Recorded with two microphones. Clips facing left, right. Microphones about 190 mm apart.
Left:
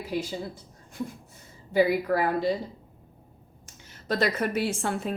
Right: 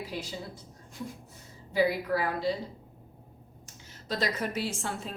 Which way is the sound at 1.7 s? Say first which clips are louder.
Left 4 dB; 55° left (ahead or behind).